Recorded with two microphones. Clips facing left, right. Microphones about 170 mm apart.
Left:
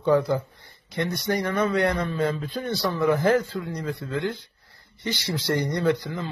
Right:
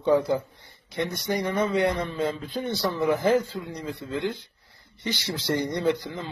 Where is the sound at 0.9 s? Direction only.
15° right (ahead or behind).